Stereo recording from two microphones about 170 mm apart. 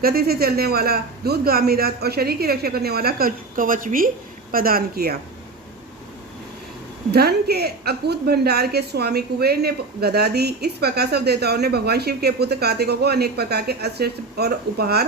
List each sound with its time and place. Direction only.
0.0 s a man's voice: 65° right (ahead or behind)
7.1 s a woman's voice: 70° right (ahead or behind)